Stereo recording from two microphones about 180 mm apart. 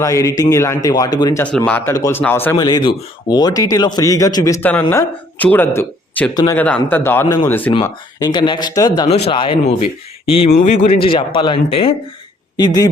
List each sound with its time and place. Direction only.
0.0 s a man's voice: 20° left (ahead or behind)
6.3 s speech: 20° left (ahead or behind)
6.6 s a man's voice: 10° left (ahead or behind)
7.9 s speech: 20° left (ahead or behind)
9.0 s speech: 35° left (ahead or behind)